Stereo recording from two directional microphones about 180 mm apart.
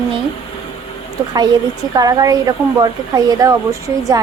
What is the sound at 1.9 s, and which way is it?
Speech, 20° right (ahead or behind).